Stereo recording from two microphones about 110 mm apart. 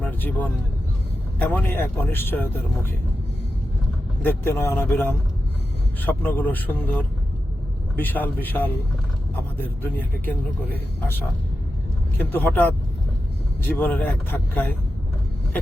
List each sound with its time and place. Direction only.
0.0 s vehicle: 15° left (ahead or behind)
1.4 s speech: 15° left (ahead or behind)
4.2 s speech: 20° left (ahead or behind)
7.9 s speech: 15° left (ahead or behind)
12.1 s speech: 15° left (ahead or behind)